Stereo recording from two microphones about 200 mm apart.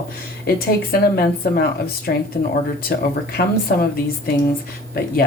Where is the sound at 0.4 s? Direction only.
50° left (ahead or behind).